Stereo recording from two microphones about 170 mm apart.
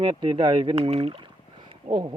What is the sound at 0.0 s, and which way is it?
Speech, 30° right (ahead or behind).